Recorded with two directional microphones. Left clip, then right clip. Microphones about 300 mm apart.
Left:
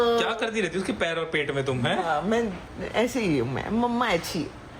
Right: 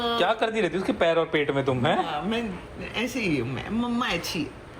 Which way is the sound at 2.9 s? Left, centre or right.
Centre.